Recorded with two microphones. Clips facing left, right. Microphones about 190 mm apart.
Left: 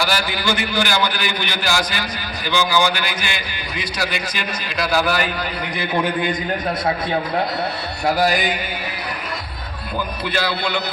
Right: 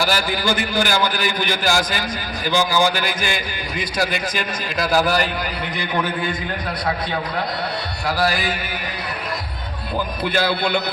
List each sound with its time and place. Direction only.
0.0 s a man's voice: 50° right (ahead or behind)
5.8 s a man's voice: 15° left (ahead or behind)
8.0 s speech: 20° left (ahead or behind)
10.2 s a man's voice: 50° right (ahead or behind)